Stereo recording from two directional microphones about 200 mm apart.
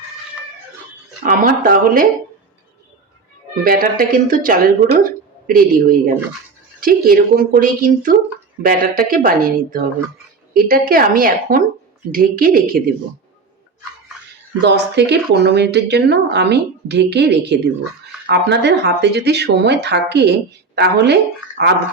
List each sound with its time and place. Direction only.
1.2 s speech: 45° right (ahead or behind)
3.6 s speech: 45° right (ahead or behind)
14.6 s speech: 60° right (ahead or behind)